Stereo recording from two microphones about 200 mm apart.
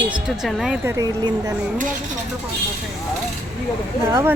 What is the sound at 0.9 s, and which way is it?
Speech, 15° right (ahead or behind).